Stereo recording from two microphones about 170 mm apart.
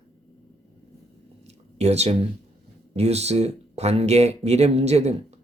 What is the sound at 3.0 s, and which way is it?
Speech, 40° right (ahead or behind).